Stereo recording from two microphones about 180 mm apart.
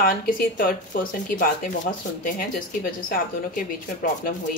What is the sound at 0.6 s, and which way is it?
Speech, 50° left (ahead or behind).